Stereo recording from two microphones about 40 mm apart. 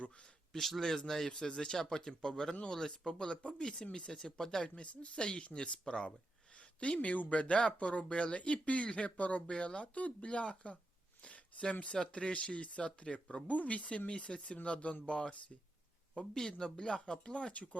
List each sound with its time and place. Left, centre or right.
0.6 s speech: centre
1.3 s speech: centre
4.8 s speech: left
5.8 s speech: left
11.2 s a sound: left
12.1 s speech: left
14.1 s speech: left
16.1 s speech: centre; by 17.7 s left